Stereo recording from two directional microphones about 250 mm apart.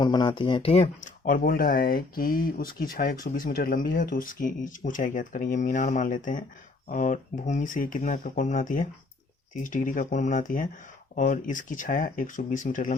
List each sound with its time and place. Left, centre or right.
0.0 s speech: centre